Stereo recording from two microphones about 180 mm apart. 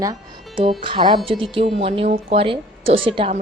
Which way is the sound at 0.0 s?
20° right (ahead or behind).